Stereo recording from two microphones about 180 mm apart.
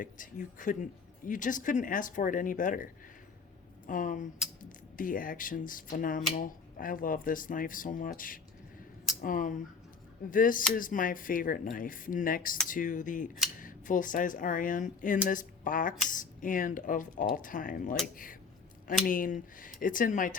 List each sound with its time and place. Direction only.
0.0 s speech: 45° left (ahead or behind)
19.0 s speech: 50° left (ahead or behind)